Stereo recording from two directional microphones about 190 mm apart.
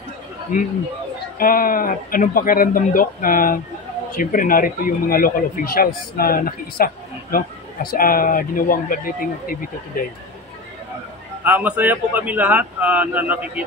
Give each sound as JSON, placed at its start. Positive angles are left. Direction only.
{"t": 0.5, "sound": "a man's voice", "side_deg": 45}
{"t": 11.4, "sound": "speech", "side_deg": -10}